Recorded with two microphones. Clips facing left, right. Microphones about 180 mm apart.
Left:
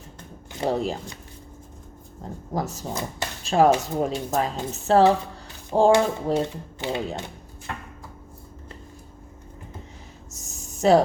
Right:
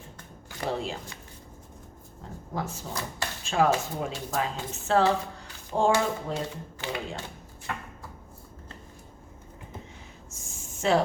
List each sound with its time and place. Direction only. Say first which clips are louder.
0.7 s a woman's voice: left 6 dB; 40° left (ahead or behind)
2.5 s a woman's voice: left 5 dB; 40° left (ahead or behind)
2.9 s speech: left 3 dB; 20° left (ahead or behind)
3.4 s a woman's voice: left 6 dB; 35° left (ahead or behind)
6.7 s speech: left 6 dB; 20° left (ahead or behind)
10.3 s a sound: left 4 dB; 40° left (ahead or behind)